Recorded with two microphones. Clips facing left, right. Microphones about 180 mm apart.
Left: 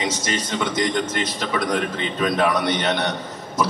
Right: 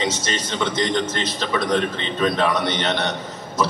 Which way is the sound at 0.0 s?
25° right (ahead or behind).